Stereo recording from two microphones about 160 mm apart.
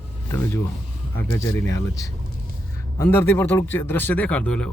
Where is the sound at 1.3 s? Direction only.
15° left (ahead or behind).